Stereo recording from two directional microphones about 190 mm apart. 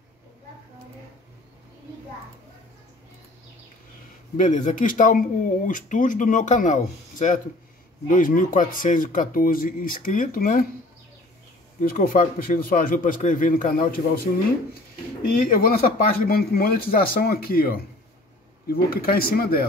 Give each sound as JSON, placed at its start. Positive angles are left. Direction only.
{"t": 4.4, "sound": "speech", "side_deg": 40}
{"t": 11.8, "sound": "speech", "side_deg": 50}
{"t": 15.3, "sound": "speech", "side_deg": 50}